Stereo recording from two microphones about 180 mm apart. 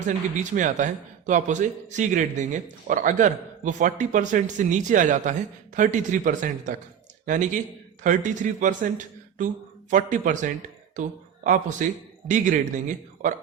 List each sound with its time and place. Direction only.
0.0 s a man's voice: 45° right (ahead or behind)